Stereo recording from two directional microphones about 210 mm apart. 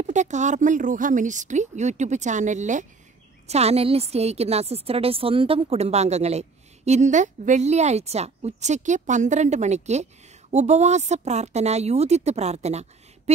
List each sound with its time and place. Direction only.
0.0 s a woman's voice: 35° right (ahead or behind)